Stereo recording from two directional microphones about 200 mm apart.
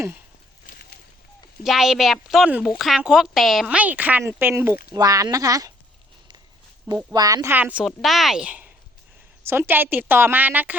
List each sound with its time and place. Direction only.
0.7 s a sound: 50° left (ahead or behind)
1.6 s a woman's voice: centre (ahead or behind); by 5.7 s 20° right (ahead or behind)
7.1 s speech: 20° right (ahead or behind)